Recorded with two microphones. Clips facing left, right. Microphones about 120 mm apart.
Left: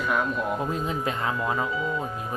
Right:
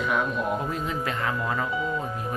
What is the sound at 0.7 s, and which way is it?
Speech, 20° left (ahead or behind).